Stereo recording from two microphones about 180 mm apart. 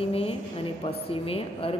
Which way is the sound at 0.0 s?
30° left (ahead or behind).